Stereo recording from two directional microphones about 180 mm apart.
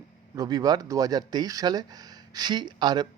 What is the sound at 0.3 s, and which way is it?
Speech, 20° right (ahead or behind).